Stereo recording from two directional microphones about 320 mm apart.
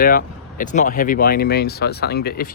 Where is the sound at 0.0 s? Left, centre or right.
Left.